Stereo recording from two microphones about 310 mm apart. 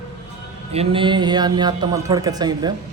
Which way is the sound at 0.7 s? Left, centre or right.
Centre.